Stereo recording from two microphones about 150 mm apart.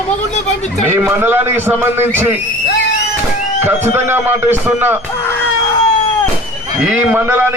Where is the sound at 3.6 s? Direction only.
15° right (ahead or behind).